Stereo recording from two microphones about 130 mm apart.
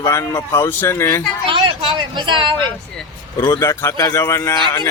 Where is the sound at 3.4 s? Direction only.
20° left (ahead or behind).